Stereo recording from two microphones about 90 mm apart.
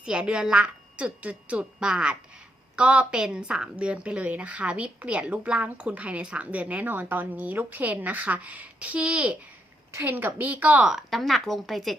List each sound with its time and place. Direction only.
0.0 s a woman's voice: 10° right (ahead or behind)
10.8 s speech: centre (ahead or behind)